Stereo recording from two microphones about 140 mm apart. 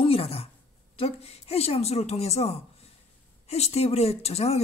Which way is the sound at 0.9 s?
45° left (ahead or behind).